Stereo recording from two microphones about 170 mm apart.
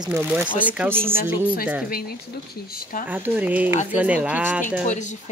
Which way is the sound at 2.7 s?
50° left (ahead or behind).